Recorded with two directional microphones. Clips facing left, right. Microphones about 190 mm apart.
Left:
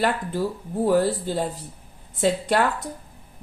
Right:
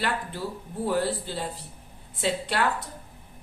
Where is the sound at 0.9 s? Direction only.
45° left (ahead or behind).